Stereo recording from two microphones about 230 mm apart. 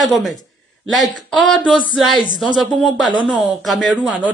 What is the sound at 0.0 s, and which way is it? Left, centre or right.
Speech, centre.